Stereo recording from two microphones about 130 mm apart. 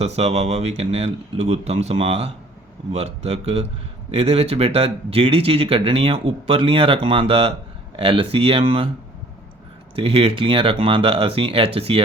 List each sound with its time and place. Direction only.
0.0 s speech: 55° right (ahead or behind)
9.9 s speech: 45° right (ahead or behind)